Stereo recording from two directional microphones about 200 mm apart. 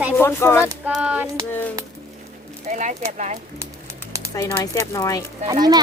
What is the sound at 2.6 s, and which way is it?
Speech, 35° right (ahead or behind).